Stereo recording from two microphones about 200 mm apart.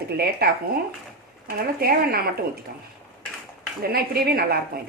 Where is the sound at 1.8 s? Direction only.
50° right (ahead or behind).